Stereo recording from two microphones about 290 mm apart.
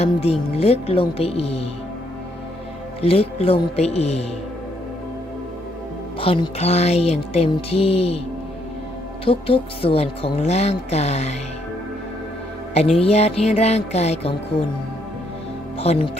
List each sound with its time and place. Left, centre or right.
0.0 s speech: left
3.0 s speech: left
6.1 s speech: centre
9.2 s speech: centre
12.7 s speech: left
15.8 s speech: left